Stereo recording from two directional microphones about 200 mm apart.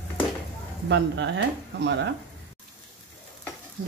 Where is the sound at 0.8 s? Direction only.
65° right (ahead or behind).